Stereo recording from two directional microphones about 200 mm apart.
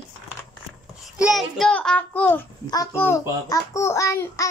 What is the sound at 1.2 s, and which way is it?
A child's voice, centre (ahead or behind).